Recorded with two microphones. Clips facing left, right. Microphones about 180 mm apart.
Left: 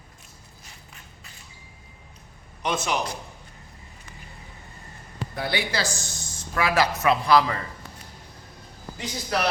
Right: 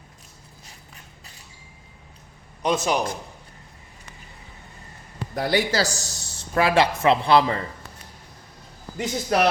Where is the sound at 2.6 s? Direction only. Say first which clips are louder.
Right 4 dB; 35° right (ahead or behind).